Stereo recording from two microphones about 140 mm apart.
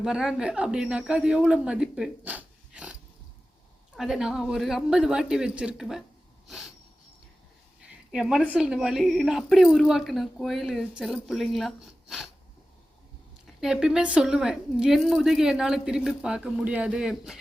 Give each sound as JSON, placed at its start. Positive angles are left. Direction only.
{"t": 0.0, "sound": "a woman's voice", "side_deg": -5}
{"t": 6.5, "sound": "a sound", "side_deg": 0}
{"t": 7.8, "sound": "a woman's voice", "side_deg": -5}
{"t": 13.6, "sound": "a woman's voice", "side_deg": -5}